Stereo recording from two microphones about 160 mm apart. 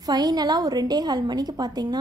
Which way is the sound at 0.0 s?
25° right (ahead or behind).